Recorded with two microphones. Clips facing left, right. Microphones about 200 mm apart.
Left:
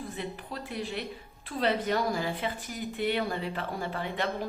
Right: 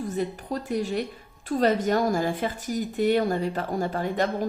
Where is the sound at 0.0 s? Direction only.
40° right (ahead or behind).